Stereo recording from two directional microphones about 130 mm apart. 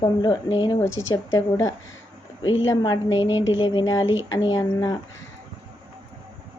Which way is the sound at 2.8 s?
40° left (ahead or behind).